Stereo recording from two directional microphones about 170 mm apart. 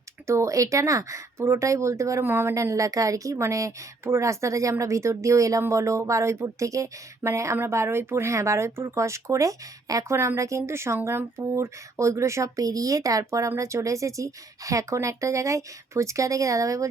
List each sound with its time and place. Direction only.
0.3 s speech: 20° right (ahead or behind)